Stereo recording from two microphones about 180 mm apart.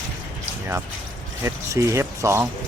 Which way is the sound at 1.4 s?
15° right (ahead or behind).